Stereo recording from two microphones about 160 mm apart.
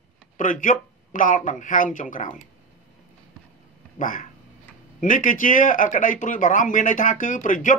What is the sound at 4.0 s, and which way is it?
Speech, 55° left (ahead or behind).